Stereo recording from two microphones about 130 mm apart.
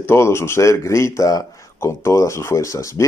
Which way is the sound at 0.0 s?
20° left (ahead or behind).